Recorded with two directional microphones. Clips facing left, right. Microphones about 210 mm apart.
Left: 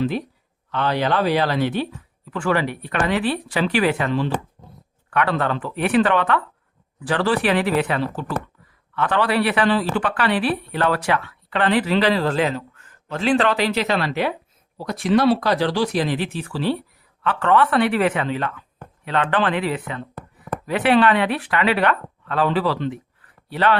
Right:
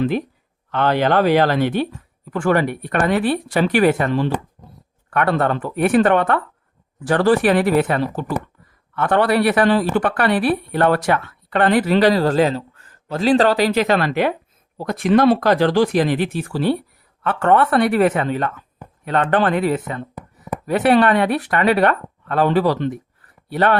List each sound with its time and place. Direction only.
0.7 s a man's voice: 50° right (ahead or behind)